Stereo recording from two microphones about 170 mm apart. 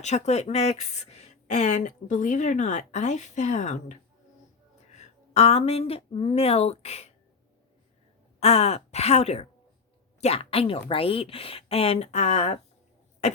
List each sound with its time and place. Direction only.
0.0 s speech: 40° left (ahead or behind)
8.4 s speech: 40° left (ahead or behind)